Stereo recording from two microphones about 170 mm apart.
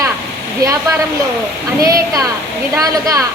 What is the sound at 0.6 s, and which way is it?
A woman's voice, 20° right (ahead or behind).